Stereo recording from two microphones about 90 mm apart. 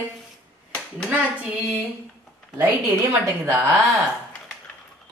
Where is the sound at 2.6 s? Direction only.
25° right (ahead or behind).